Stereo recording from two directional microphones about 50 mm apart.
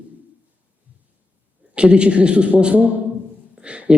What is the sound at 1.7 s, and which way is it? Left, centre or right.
Speech, right.